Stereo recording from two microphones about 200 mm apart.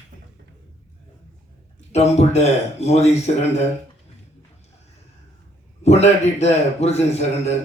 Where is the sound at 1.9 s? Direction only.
35° left (ahead or behind).